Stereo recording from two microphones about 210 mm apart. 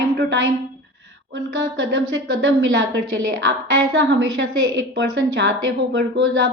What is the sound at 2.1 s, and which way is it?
Speech, 65° right (ahead or behind).